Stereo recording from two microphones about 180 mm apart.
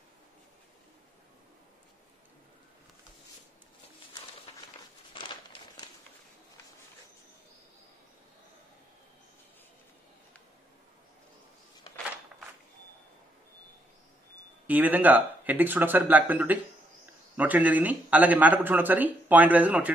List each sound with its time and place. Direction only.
5.1 s crumpling: 25° left (ahead or behind)
14.7 s speech: 10° right (ahead or behind)